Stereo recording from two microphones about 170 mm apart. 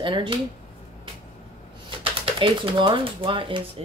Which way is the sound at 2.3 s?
30° right (ahead or behind).